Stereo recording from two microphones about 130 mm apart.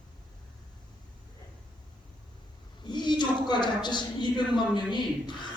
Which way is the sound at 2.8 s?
35° left (ahead or behind).